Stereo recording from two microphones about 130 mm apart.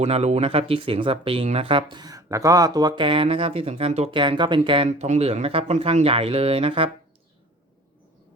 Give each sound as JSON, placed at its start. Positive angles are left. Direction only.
{"t": 0.0, "sound": "speech", "side_deg": -55}
{"t": 4.2, "sound": "speech", "side_deg": -35}
{"t": 4.9, "sound": "speech", "side_deg": -65}